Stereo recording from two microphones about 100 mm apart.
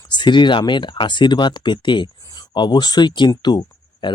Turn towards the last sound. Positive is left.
turn(degrees=50)  # may be behind; listen again after turning